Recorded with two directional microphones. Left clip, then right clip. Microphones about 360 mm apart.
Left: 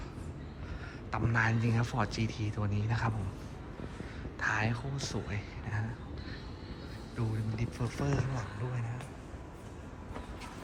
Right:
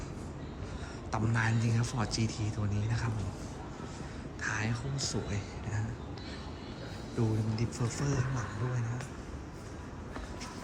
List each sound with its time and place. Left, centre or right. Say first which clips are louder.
1.1 s speech: left 2 dB; centre
4.4 s speech: left 3 dB; centre
7.2 s speech: right 5 dB; centre